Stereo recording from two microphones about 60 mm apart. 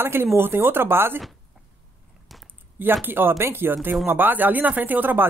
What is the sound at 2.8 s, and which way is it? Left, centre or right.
Speech, right.